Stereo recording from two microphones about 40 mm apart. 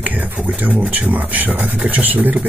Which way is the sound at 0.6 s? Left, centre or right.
Right.